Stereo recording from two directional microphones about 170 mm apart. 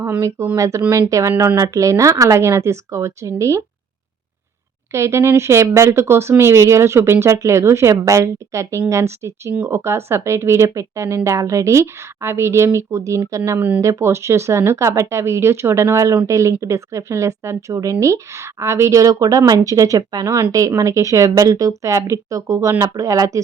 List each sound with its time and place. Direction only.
0.0 s speech: 15° right (ahead or behind)
4.9 s a woman's voice: 15° right (ahead or behind)